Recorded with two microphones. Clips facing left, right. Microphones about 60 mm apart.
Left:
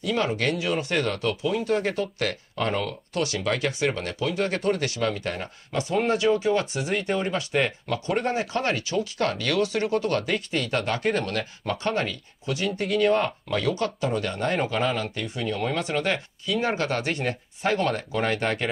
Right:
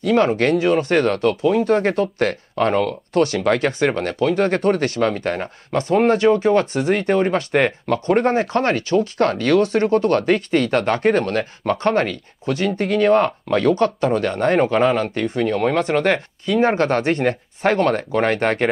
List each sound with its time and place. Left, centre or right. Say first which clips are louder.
0.0 s speech: right 9 dB; right